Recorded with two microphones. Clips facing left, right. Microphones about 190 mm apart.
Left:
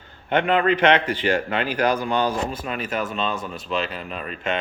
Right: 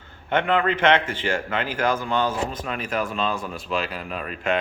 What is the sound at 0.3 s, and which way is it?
A man's voice, 20° left (ahead or behind).